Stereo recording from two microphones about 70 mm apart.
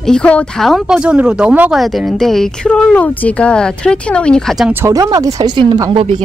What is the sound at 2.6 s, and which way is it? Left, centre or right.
Speech, centre.